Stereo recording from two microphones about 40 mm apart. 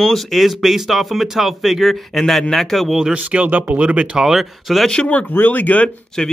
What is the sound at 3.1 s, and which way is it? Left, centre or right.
Speech, right.